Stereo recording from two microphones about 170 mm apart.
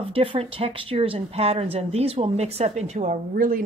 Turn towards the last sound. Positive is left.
turn(degrees=-55)  # may be behind; listen again after turning